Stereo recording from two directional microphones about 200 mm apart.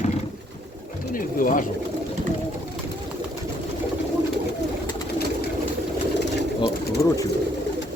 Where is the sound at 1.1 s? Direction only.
40° left (ahead or behind).